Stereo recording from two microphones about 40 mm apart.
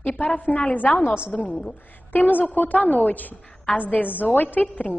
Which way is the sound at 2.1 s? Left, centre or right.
Left.